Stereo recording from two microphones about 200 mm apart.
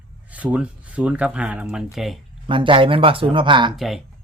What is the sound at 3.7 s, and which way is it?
Speech, centre (ahead or behind).